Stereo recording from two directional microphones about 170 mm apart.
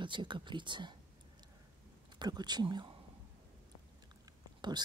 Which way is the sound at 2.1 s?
25° right (ahead or behind).